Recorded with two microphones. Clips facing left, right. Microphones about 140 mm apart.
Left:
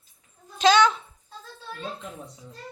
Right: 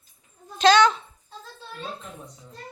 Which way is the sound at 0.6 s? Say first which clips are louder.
Right 2 dB; 5° left (ahead or behind).